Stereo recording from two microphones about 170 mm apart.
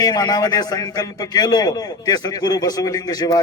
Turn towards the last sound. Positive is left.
turn(degrees=20)  # may be behind; listen again after turning